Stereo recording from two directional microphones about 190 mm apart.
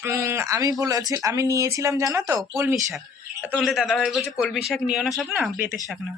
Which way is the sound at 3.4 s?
5° right (ahead or behind).